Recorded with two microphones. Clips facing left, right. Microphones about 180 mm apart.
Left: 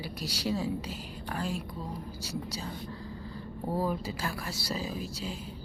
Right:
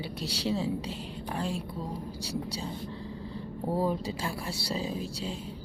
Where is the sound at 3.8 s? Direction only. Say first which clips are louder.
Right 2 dB; 30° right (ahead or behind).